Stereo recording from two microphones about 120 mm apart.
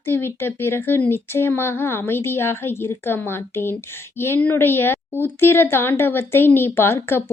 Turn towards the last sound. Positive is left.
turn(degrees=20)  # may be behind; listen again after turning